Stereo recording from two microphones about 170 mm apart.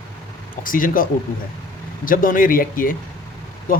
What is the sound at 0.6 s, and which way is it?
Speech, 55° left (ahead or behind).